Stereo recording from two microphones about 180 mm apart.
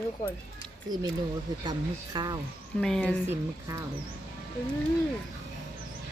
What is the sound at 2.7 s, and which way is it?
Speech, 5° left (ahead or behind).